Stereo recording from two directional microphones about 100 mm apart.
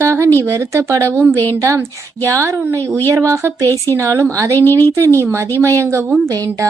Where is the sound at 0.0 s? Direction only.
30° right (ahead or behind).